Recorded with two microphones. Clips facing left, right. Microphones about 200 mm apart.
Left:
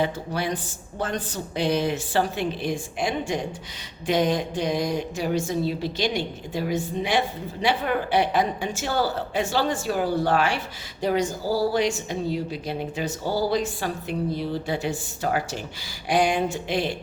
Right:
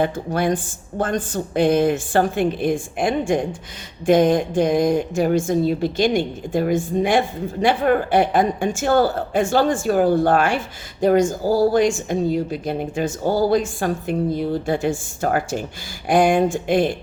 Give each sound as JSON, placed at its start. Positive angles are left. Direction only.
{"t": 0.0, "sound": "a woman's voice", "side_deg": -50}